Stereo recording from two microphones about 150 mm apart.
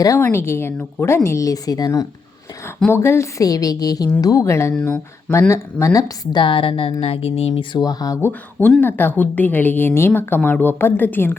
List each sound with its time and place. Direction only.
0.0 s a woman's voice: 20° left (ahead or behind)
4.7 s a woman's voice: 5° left (ahead or behind)
5.3 s a woman's voice: 20° left (ahead or behind)